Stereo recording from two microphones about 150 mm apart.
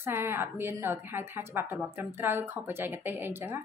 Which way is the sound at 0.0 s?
15° right (ahead or behind).